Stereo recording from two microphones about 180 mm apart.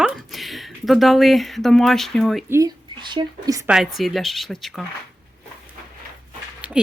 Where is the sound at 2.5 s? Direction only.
20° right (ahead or behind).